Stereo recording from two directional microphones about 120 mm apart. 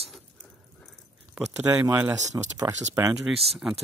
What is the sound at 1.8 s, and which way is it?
Speech, 20° right (ahead or behind).